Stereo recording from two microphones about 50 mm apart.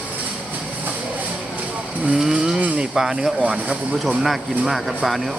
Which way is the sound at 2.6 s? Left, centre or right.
Right.